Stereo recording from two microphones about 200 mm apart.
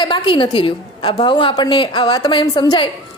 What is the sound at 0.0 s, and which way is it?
A woman's voice, 25° left (ahead or behind).